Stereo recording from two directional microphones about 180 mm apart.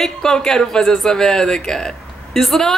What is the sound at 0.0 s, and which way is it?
Speech, 5° left (ahead or behind).